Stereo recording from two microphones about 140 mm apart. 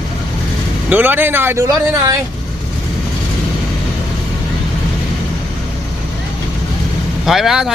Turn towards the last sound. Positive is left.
turn(degrees=-5)  # may be behind; listen again after turning